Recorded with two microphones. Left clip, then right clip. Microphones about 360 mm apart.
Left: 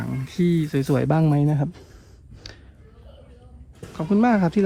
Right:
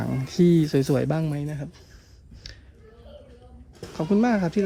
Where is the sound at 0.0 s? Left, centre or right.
Centre.